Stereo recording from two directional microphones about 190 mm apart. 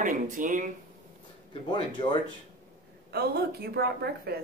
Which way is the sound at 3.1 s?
55° right (ahead or behind).